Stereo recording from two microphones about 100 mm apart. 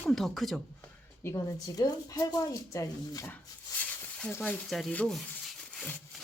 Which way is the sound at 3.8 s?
10° left (ahead or behind).